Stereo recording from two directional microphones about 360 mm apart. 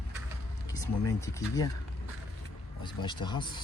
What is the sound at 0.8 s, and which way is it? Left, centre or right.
Speech, centre.